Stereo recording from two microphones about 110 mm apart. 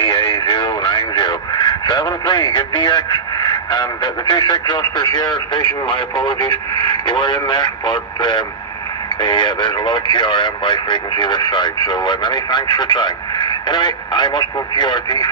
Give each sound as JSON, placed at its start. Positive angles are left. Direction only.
{"t": 0.0, "sound": "speech", "side_deg": 45}